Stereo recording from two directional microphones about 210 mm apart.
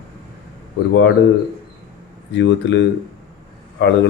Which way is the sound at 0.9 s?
60° left (ahead or behind).